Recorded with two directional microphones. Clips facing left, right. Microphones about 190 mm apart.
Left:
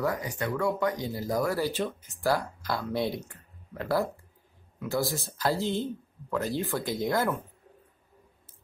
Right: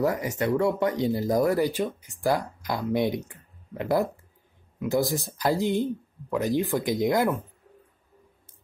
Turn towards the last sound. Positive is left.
turn(degrees=-15)  # may be behind; listen again after turning